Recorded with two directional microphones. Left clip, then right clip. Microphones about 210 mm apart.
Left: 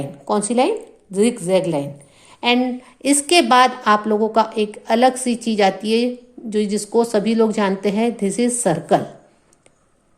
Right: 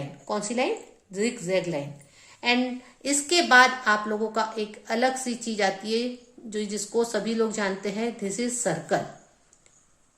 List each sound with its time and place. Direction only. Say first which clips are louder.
0.3 s a woman's voice: left 9 dB; 35° left (ahead or behind)